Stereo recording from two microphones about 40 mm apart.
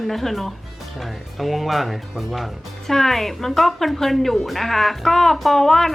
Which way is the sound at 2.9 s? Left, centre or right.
Centre.